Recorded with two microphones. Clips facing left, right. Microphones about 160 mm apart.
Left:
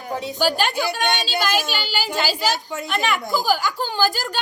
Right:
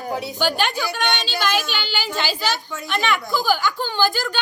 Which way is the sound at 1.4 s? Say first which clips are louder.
Even; 40° left (ahead or behind).